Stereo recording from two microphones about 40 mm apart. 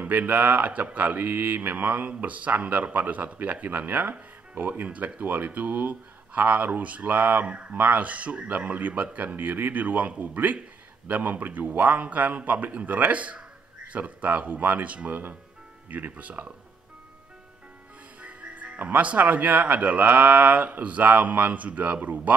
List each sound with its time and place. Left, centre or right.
0.3 s speech: right
1.2 s mantra: right
1.9 s speech: right
7.7 s a man's voice: right
18.2 s music: right
18.8 s speech: right